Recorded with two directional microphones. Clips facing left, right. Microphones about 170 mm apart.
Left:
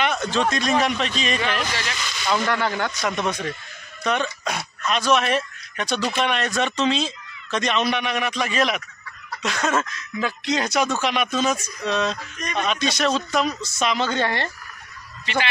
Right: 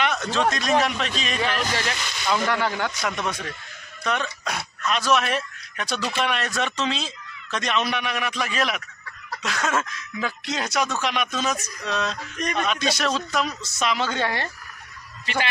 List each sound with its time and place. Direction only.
0.3 s speech: centre (ahead or behind)
1.8 s speech: 50° right (ahead or behind)
2.4 s speech: 10° right (ahead or behind)
3.0 s speech: centre (ahead or behind)